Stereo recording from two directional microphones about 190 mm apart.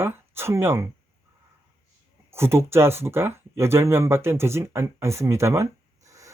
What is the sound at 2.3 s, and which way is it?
Speech, 15° right (ahead or behind).